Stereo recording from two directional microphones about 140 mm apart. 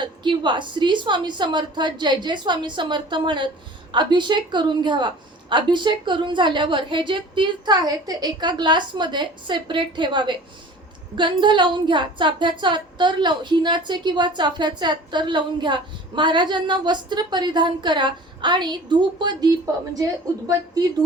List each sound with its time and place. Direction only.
0.0 s speech: 35° right (ahead or behind)